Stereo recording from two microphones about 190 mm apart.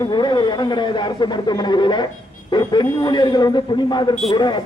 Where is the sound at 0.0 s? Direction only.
25° left (ahead or behind).